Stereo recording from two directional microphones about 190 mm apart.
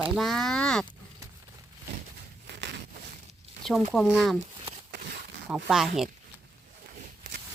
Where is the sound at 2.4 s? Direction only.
65° right (ahead or behind).